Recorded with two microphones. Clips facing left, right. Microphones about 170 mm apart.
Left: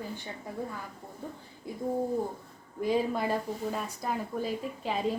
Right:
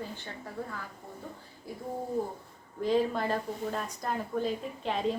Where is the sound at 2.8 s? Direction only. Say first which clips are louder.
Right 1 dB; 10° left (ahead or behind).